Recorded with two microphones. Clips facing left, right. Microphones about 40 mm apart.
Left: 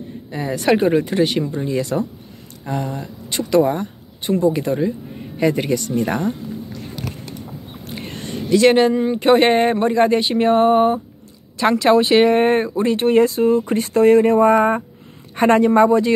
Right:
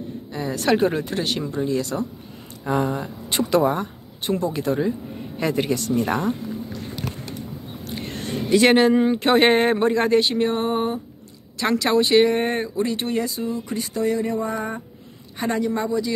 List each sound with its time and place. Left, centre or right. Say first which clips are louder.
0.3 s speech: left 4 dB; centre
2.8 s speech: right 3 dB; right
3.3 s speech: left 3 dB; centre
7.9 s a sound: even; centre
8.9 s speech: left 3 dB; centre
10.3 s a sound: left 8 dB; left
11.5 s a man's voice: left 5 dB; left